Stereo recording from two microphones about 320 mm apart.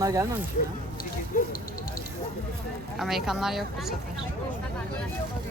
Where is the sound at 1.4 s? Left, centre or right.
Left.